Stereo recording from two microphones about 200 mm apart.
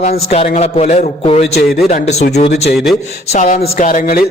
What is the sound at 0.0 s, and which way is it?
A man's voice, 30° left (ahead or behind).